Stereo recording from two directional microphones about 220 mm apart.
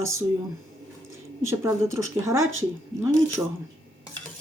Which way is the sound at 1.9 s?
15° right (ahead or behind).